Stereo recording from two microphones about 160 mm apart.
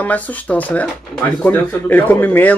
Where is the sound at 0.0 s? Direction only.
10° left (ahead or behind).